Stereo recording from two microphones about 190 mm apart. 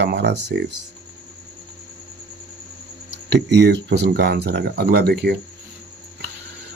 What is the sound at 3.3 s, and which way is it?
Speech, 65° right (ahead or behind).